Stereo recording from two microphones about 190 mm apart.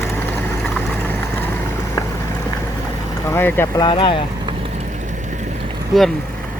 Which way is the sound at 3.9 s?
25° left (ahead or behind).